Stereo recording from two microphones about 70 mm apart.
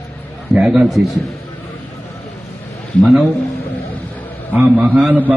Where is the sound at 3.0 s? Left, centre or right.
Centre.